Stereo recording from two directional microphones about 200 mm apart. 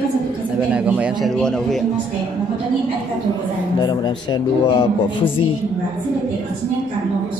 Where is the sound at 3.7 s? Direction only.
20° left (ahead or behind).